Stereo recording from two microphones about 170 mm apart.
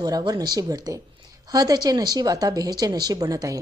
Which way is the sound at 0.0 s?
20° right (ahead or behind).